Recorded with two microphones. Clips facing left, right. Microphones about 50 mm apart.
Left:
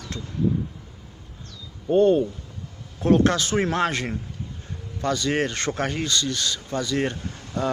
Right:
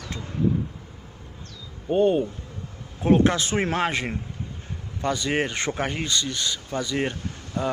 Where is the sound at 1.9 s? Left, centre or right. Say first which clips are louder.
Left 3 dB; centre.